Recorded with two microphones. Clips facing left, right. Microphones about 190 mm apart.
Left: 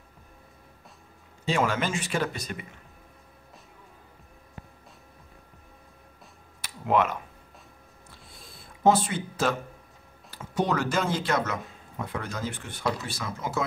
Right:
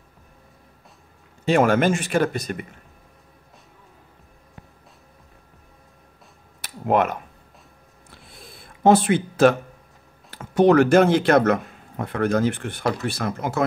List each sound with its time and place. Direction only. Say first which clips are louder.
1.4 s speech: right 9 dB; 60° right (ahead or behind)
6.6 s a sound: right 4 dB; 50° right (ahead or behind)
8.8 s speech: right 6 dB; 65° right (ahead or behind)